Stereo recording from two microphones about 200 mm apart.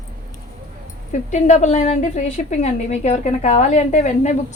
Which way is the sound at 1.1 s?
35° left (ahead or behind).